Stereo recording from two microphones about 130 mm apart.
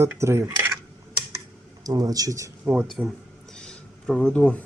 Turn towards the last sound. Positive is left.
turn(degrees=10)  # may be behind; listen again after turning